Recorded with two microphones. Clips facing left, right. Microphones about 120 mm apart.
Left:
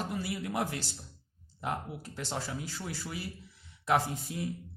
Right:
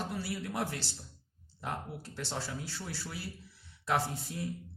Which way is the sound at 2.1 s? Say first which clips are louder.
Left 2 dB; 15° left (ahead or behind).